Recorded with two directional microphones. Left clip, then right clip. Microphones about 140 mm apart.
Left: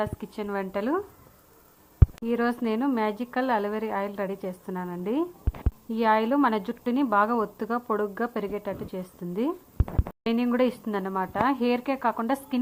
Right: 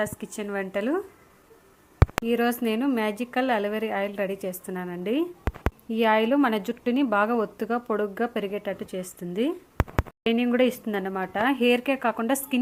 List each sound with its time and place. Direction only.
0.0 s a woman's voice: 15° right (ahead or behind)
2.2 s a woman's voice: 15° right (ahead or behind)